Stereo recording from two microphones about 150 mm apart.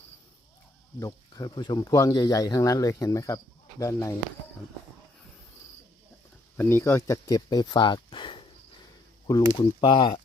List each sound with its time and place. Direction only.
0.9 s speech: 25° left (ahead or behind)
6.6 s speech: 15° left (ahead or behind); by 8.4 s 30° left (ahead or behind)
9.6 s speech: 30° left (ahead or behind)